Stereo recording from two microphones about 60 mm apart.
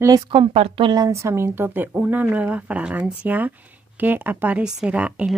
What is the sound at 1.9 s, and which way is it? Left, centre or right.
Speech, right.